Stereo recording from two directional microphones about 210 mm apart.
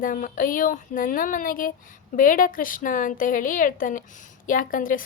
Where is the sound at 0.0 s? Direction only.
40° left (ahead or behind).